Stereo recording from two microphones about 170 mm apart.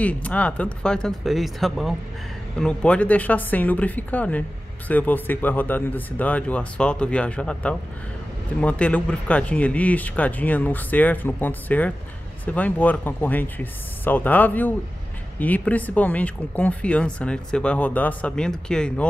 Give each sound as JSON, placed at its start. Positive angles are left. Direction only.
{"t": 0.0, "sound": "speech", "side_deg": 10}